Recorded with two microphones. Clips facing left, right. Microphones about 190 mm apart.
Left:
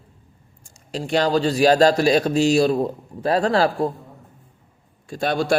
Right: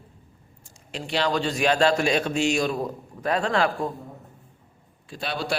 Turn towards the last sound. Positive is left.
turn(degrees=50)  # may be behind; listen again after turning